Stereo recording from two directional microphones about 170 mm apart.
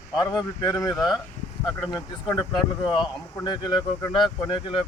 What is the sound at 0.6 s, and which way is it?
Speech, 20° left (ahead or behind).